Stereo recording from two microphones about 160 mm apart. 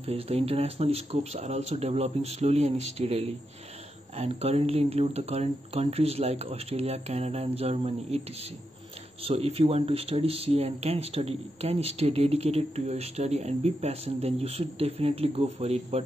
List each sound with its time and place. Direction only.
0.0 s speech: 40° right (ahead or behind)
9.2 s speech: 40° right (ahead or behind)